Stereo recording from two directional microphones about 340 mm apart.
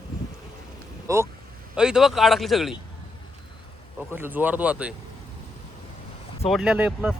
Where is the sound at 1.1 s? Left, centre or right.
Centre.